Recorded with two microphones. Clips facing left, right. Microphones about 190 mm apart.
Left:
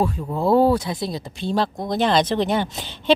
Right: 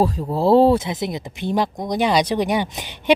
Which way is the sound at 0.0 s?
35° right (ahead or behind).